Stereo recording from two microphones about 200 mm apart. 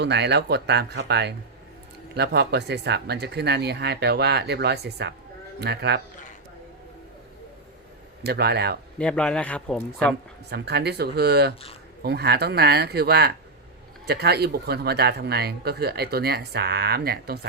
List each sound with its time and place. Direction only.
0.0 s speech: 60° right (ahead or behind)
8.2 s speech: 55° right (ahead or behind)
9.0 s speech: 5° left (ahead or behind)
10.5 s speech: 55° right (ahead or behind)